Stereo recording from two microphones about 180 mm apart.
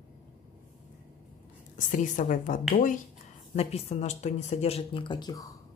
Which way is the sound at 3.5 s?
35° left (ahead or behind).